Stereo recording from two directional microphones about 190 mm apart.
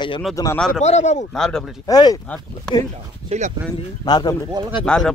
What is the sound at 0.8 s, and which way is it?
Speech, 35° left (ahead or behind).